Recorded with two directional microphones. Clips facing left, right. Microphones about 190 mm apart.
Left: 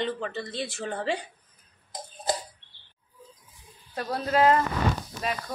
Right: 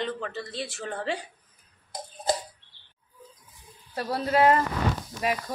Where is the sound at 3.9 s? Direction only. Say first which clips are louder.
Right 1 dB; 5° right (ahead or behind).